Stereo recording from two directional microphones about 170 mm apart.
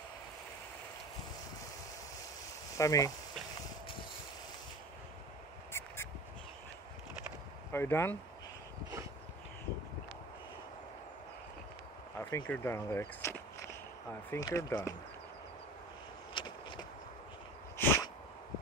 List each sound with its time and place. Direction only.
2.8 s speech: 20° left (ahead or behind)
5.7 s a sound: 15° left (ahead or behind)
7.7 s speech: 15° left (ahead or behind)
12.2 s speech: 15° left (ahead or behind)
16.3 s vehicle: 25° left (ahead or behind)
17.7 s a sound: 15° left (ahead or behind)